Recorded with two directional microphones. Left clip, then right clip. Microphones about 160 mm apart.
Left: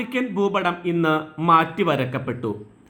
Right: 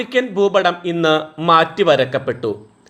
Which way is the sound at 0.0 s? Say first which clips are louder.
Right 7 dB; 30° right (ahead or behind).